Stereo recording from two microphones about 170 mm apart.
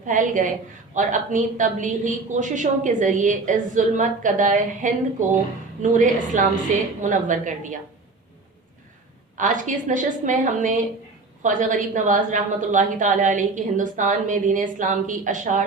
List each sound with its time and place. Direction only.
0.0 s a woman's voice: 50° right (ahead or behind)
9.4 s a woman's voice: 50° right (ahead or behind)